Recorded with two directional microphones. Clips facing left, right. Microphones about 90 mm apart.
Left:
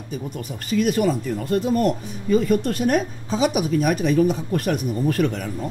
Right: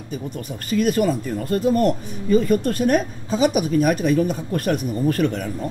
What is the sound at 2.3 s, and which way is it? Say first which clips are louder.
Speech: right 1 dB; 45° right (ahead or behind).